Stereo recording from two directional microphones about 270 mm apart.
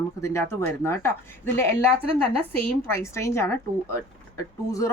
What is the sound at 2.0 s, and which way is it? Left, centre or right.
Speech, right.